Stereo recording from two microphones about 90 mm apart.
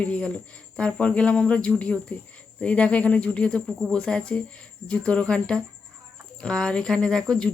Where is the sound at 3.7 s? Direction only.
5° right (ahead or behind).